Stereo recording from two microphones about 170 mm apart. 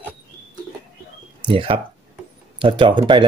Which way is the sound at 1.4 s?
30° right (ahead or behind).